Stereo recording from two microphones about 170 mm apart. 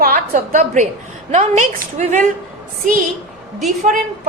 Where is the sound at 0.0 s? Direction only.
55° right (ahead or behind).